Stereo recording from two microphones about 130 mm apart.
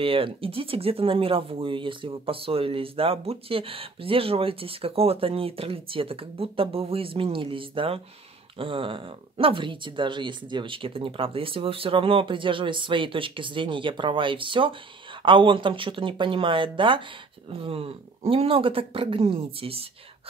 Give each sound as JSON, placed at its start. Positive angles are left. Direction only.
{"t": 0.0, "sound": "speech", "side_deg": -45}